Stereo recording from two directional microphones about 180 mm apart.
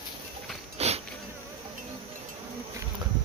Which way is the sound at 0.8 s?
35° right (ahead or behind).